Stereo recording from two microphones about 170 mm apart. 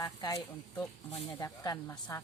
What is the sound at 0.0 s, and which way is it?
Speech, 20° left (ahead or behind).